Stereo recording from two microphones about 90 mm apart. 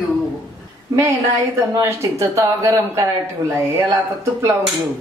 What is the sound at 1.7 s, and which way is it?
A woman's voice, 35° right (ahead or behind).